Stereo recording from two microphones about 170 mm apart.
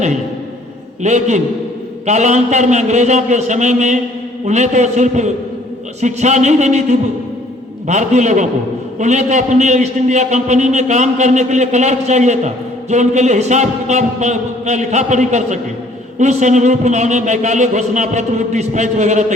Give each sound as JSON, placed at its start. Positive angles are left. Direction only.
{"t": 1.0, "sound": "a man's voice", "side_deg": -45}